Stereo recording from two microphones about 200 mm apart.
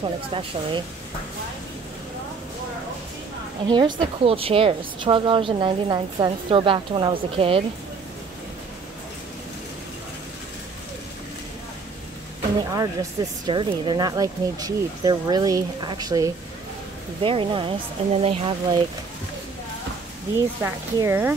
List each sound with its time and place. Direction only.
0.3 s a woman's voice: 25° right (ahead or behind)
3.6 s a woman's voice: 20° right (ahead or behind)
12.7 s a woman's voice: 20° right (ahead or behind)
20.3 s speech: 15° right (ahead or behind)